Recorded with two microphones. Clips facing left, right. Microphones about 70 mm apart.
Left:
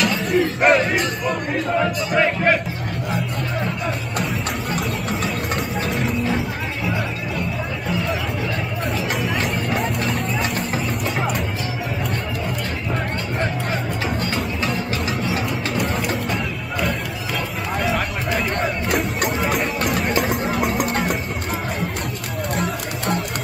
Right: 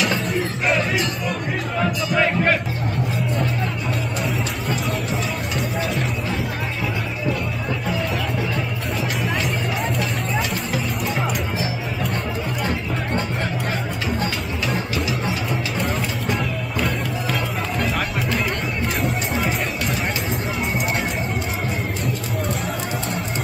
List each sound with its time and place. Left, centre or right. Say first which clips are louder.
0.3 s speech: left 6 dB; left
2.1 s speech: left 2 dB; centre
18.9 s music: left 1 dB; centre
20.2 s a sound: left 5 dB; left
22.6 s music: left 1 dB; left